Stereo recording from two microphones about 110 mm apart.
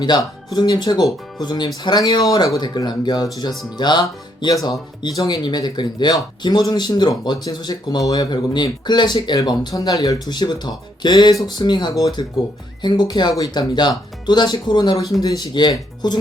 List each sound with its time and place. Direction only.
0.0 s speech: 40° left (ahead or behind)